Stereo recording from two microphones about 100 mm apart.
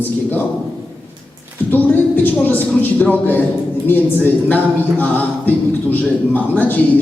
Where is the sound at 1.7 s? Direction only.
20° left (ahead or behind).